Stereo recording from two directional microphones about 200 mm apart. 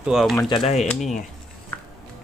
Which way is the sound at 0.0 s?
Centre (ahead or behind).